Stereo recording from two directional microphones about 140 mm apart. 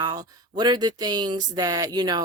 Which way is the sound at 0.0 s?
30° right (ahead or behind).